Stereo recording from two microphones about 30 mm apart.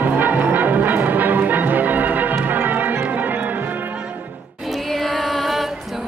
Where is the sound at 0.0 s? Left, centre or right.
Right.